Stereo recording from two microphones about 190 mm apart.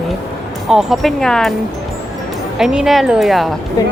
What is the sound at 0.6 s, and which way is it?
Speech, centre (ahead or behind).